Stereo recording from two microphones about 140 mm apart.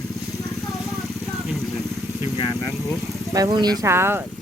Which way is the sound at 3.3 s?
25° right (ahead or behind).